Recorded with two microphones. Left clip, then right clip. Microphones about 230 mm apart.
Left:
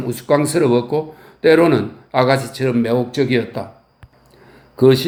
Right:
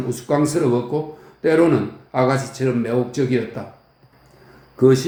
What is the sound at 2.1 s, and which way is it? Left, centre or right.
Speech, left.